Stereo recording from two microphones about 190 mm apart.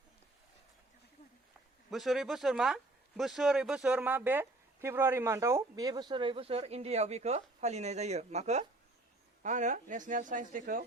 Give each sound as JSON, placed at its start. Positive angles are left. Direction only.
{"t": 1.9, "sound": "a woman's voice", "side_deg": 0}